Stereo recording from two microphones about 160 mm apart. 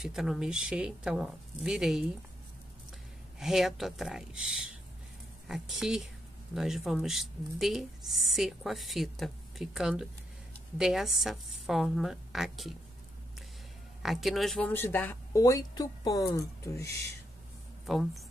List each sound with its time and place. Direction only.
0.0 s speech: centre (ahead or behind)
3.3 s speech: centre (ahead or behind)
14.0 s speech: centre (ahead or behind)
14.7 s speech: 15° left (ahead or behind)
17.8 s speech: centre (ahead or behind)